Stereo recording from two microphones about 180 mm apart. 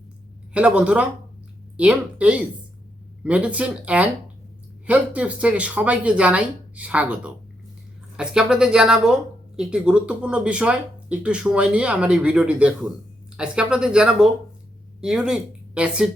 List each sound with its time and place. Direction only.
0.5 s speech: 5° right (ahead or behind)